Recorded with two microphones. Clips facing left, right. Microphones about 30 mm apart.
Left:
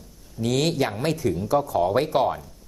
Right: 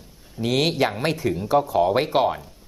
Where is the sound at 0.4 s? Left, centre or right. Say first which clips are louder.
Right 2 dB; right.